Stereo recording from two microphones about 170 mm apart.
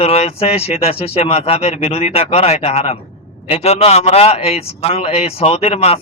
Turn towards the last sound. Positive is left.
turn(degrees=40)  # may be behind; listen again after turning